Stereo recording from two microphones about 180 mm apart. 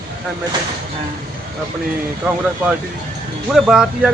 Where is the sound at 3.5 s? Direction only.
5° right (ahead or behind).